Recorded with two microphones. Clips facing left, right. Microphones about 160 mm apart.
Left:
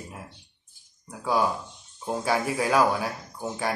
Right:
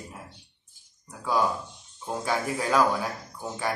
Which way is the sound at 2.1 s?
15° left (ahead or behind).